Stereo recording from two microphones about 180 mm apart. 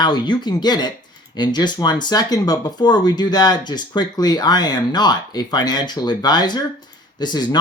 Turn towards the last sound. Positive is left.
turn(degrees=25)  # may be behind; listen again after turning